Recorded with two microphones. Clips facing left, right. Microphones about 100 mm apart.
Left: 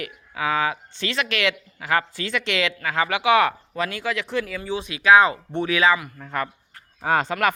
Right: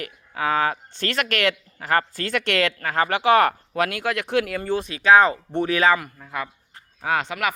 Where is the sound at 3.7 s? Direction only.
60° right (ahead or behind).